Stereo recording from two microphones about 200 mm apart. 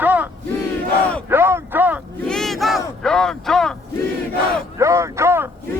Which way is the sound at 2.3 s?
Centre (ahead or behind).